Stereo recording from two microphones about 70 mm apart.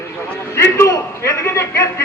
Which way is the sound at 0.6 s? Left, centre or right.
Left.